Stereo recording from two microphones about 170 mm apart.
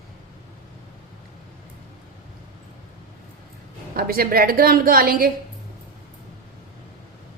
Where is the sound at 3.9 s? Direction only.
60° right (ahead or behind).